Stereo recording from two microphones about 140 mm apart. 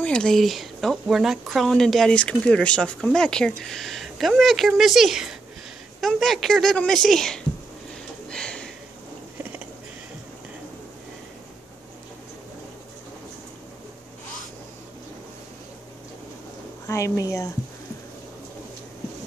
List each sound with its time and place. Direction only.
0.0 s speech: 5° left (ahead or behind)
8.3 s a sound: 5° left (ahead or behind)
16.8 s a woman's voice: 20° left (ahead or behind)